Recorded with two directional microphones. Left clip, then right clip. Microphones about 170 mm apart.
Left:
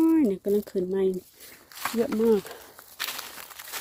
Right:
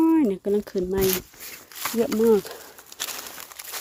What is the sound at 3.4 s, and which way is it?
Bird, 20° right (ahead or behind).